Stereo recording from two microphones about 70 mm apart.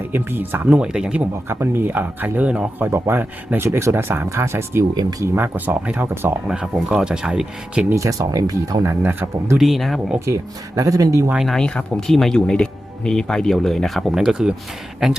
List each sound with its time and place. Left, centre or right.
0.1 s speech: right
1.3 s speech: right; by 2.6 s centre
2.7 s speech: right
6.5 s speech: centre
7.9 s speech: right
8.8 s speech: right
9.6 s speech: centre
10.2 s speech: right
11.4 s speech: centre